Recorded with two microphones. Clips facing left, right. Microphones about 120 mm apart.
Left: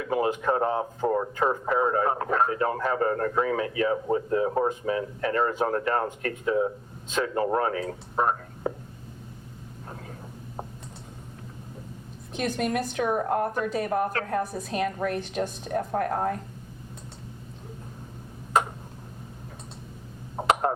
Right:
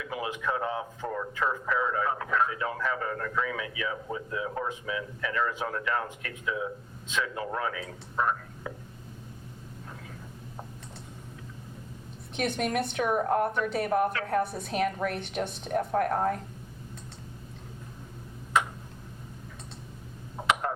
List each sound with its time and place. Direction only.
0.0 s speech: 45° left (ahead or behind)
12.4 s speech: 5° right (ahead or behind)
18.5 s tick-tock: 40° left (ahead or behind)
20.3 s a sound: 40° left (ahead or behind)